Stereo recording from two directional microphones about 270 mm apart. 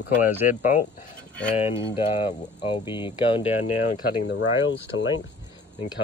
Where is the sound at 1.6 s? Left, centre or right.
Centre.